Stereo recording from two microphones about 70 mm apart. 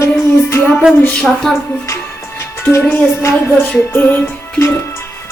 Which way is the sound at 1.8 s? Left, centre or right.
Left.